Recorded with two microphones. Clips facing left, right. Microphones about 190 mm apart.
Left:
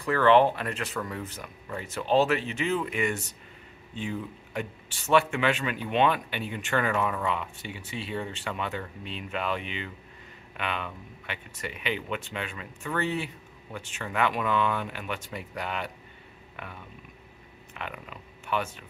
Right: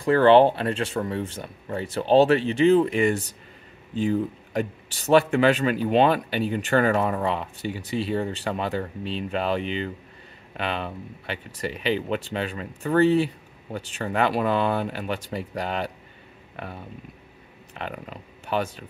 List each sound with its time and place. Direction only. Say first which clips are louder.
0.0 s a man's voice: right 5 dB; 30° right (ahead or behind)